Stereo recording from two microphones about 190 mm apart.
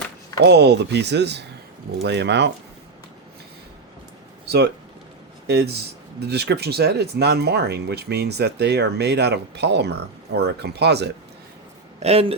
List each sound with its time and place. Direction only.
0.3 s speech: 60° right (ahead or behind)
4.4 s speech: 60° right (ahead or behind)
12.0 s speech: 30° right (ahead or behind)